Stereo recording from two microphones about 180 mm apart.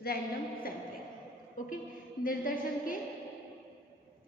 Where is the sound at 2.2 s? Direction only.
50° left (ahead or behind).